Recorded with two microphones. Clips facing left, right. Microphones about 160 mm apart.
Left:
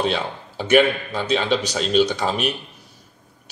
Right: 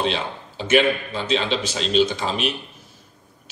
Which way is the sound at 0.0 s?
50° left (ahead or behind).